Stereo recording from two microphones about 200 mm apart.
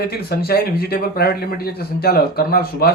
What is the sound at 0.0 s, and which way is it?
A man's voice, 50° left (ahead or behind).